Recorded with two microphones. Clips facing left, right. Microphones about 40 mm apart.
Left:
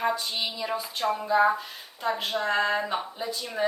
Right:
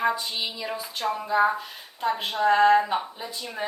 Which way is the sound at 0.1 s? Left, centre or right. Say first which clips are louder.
Right 1 dB; centre.